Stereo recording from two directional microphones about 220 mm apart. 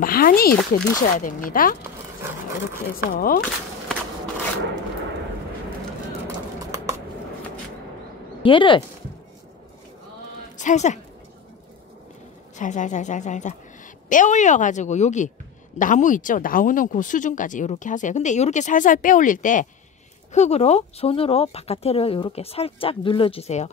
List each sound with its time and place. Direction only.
0.0 s speech: 40° left (ahead or behind)
2.9 s speech: 40° left (ahead or behind)
6.2 s clip-clop: 10° right (ahead or behind)
8.4 s speech: 25° left (ahead or behind)
10.6 s a woman's voice: 35° left (ahead or behind)
12.5 s speech: 35° left (ahead or behind)